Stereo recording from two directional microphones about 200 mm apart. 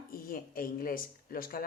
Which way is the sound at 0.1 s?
45° left (ahead or behind).